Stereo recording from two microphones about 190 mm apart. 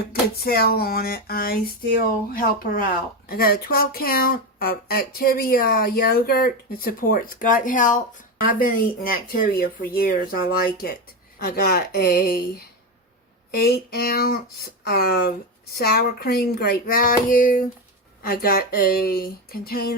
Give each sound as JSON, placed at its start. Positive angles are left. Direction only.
{"t": 0.1, "sound": "speech", "side_deg": 55}